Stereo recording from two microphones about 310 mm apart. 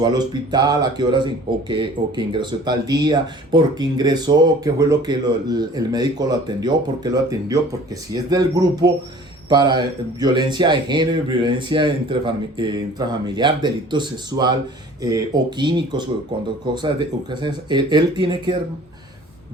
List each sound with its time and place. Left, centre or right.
0.0 s speech: centre